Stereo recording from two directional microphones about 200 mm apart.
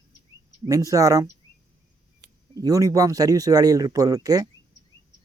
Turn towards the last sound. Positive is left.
turn(degrees=-20)  # may be behind; listen again after turning